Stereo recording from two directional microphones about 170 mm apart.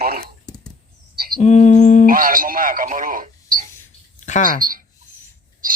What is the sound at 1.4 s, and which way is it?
Mantra, 45° left (ahead or behind).